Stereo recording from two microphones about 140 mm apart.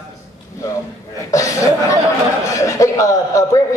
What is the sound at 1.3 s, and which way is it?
A man's voice, 20° left (ahead or behind).